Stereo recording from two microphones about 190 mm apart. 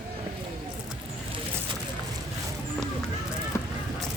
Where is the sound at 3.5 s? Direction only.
15° left (ahead or behind).